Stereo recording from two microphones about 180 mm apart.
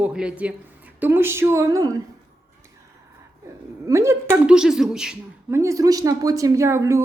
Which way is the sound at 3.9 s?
15° right (ahead or behind).